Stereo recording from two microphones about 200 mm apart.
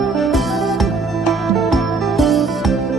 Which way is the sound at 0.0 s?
Centre (ahead or behind).